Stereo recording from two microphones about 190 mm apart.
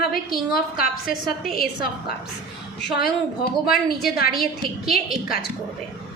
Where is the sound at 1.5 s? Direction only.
55° left (ahead or behind).